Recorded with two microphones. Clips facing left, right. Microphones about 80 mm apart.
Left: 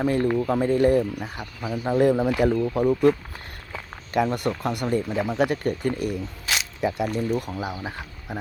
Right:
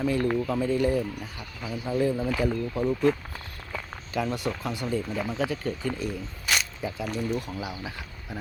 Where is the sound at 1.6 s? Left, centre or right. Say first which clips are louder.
Left 6 dB; left.